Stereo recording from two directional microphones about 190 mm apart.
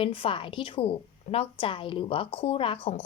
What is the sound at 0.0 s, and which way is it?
A woman's voice, 30° left (ahead or behind).